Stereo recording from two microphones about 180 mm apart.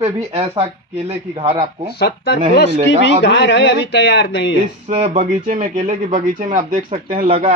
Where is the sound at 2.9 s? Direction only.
90° left; by 4.6 s 70° left (ahead or behind).